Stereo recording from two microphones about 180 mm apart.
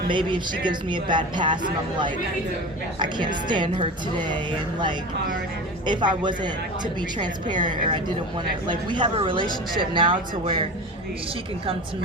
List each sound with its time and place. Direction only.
0.1 s speech: 25° right (ahead or behind)
5.8 s speech: 25° right (ahead or behind)
7.6 s speech: 25° right (ahead or behind)